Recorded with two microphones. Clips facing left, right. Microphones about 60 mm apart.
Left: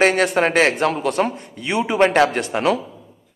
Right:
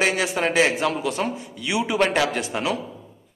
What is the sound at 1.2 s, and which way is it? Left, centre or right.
A man's voice, left.